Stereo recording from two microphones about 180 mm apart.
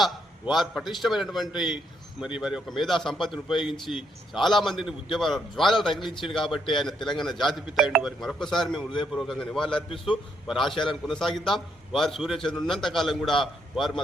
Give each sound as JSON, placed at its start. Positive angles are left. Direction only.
{"t": 0.5, "sound": "speech", "side_deg": 0}
{"t": 5.9, "sound": "a man's voice", "side_deg": 25}
{"t": 6.2, "sound": "speech", "side_deg": 0}